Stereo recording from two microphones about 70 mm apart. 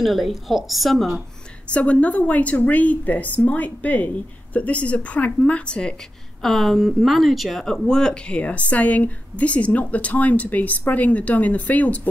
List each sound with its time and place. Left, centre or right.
0.0 s a woman's voice: centre
1.7 s speech: centre
6.4 s speech: centre; by 12.1 s left